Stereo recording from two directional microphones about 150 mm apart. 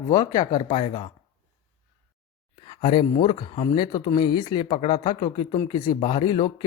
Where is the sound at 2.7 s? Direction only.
35° left (ahead or behind).